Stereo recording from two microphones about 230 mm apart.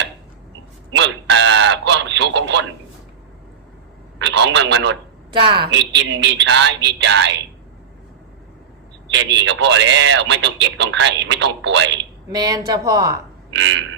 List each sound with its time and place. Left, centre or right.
0.9 s a sound: right
4.2 s a man's voice: right
5.3 s a woman's voice: right
5.7 s speech: right
9.1 s speech: right
11.9 s speech: centre
13.5 s a sound: right